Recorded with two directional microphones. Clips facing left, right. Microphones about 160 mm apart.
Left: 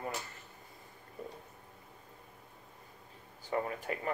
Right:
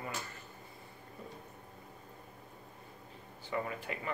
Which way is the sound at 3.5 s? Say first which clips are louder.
Left 3 dB; 45° left (ahead or behind).